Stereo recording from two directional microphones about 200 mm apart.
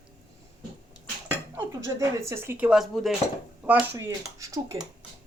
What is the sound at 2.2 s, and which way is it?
Speech, 15° right (ahead or behind).